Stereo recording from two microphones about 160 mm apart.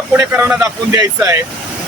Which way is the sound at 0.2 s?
15° right (ahead or behind).